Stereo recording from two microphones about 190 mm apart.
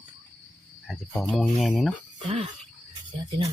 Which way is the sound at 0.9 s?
5° left (ahead or behind).